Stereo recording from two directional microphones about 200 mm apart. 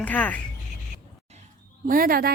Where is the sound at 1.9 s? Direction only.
45° right (ahead or behind).